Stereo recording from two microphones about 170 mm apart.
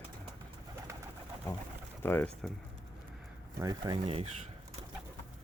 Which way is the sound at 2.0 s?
15° left (ahead or behind).